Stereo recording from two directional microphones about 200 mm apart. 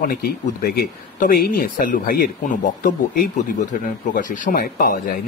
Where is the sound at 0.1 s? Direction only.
50° left (ahead or behind).